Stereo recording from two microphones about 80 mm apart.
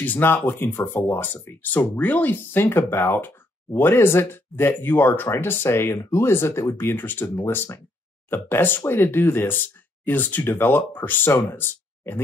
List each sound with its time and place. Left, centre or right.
0.0 s speech: left